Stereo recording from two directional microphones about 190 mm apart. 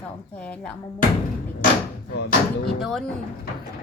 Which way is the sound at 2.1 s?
60° left (ahead or behind).